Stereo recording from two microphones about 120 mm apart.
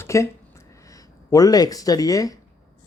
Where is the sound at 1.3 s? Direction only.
30° left (ahead or behind).